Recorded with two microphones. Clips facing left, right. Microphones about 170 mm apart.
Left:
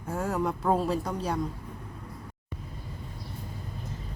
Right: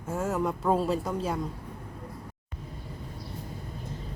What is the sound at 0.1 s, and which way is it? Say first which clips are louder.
A woman's voice: even; centre (ahead or behind).